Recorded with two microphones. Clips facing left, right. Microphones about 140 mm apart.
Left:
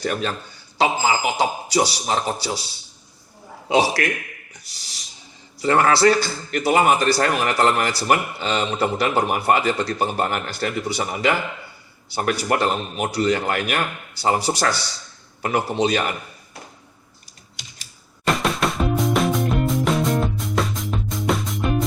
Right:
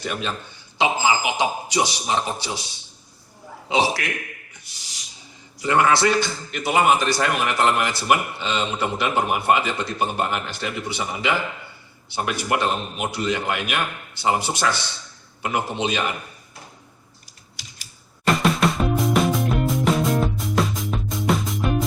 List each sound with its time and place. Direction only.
0.0 s a man's voice: 40° left (ahead or behind)
3.7 s a man's voice: 45° left (ahead or behind)
5.5 s a man's voice: 35° left (ahead or behind)
18.3 s music: centre (ahead or behind)